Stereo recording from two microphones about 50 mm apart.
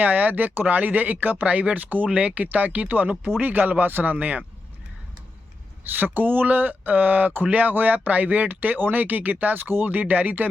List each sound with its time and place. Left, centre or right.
0.0 s speech: right
5.9 s speech: right